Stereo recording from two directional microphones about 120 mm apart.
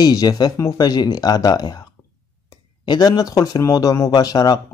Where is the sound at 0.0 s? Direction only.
30° left (ahead or behind).